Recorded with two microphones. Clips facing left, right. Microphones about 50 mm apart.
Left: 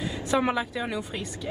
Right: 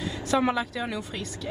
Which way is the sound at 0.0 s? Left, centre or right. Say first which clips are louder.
Even; centre.